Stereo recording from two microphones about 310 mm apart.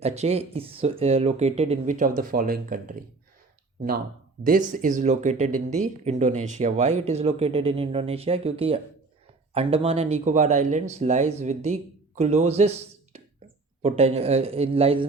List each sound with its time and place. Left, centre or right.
0.0 s speech: centre
4.4 s speech: right